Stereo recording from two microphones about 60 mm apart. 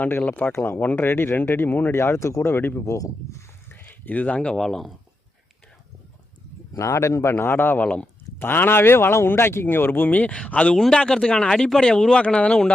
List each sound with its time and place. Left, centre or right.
0.2 s speech: left
0.5 s speech: left
0.8 s speech: left
1.0 s speech: left
2.5 s speech: left
2.8 s speech: left
3.7 s a sound: left; by 4.6 s centre
4.6 s speech: centre
6.7 s speech: left
7.9 s speech: left
8.4 s speech: left; by 12.7 s centre